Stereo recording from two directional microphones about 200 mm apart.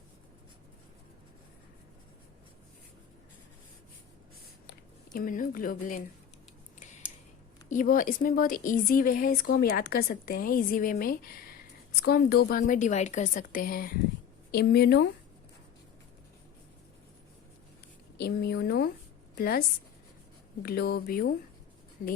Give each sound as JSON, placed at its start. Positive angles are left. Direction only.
{"t": 5.1, "sound": "a woman's voice", "side_deg": 45}
{"t": 7.7, "sound": "a woman's voice", "side_deg": 40}
{"t": 18.2, "sound": "a woman's voice", "side_deg": 50}